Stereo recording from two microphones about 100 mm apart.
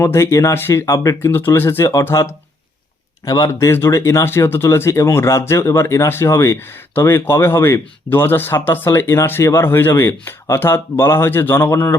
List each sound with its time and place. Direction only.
0.0 s speech: 25° left (ahead or behind)
0.9 s speech: 35° left (ahead or behind)
1.3 s speech: 20° left (ahead or behind)